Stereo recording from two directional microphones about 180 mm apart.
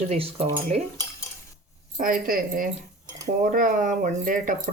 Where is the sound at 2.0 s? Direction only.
50° right (ahead or behind).